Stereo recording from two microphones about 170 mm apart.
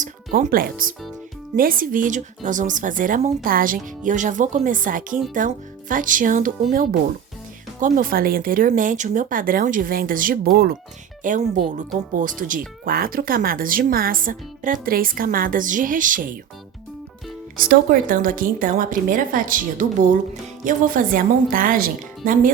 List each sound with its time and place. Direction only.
0.0 s speech: 50° right (ahead or behind)
17.6 s speech: 55° right (ahead or behind)